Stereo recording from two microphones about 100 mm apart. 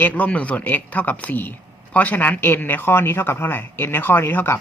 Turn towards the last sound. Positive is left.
turn(degrees=20)  # may be behind; listen again after turning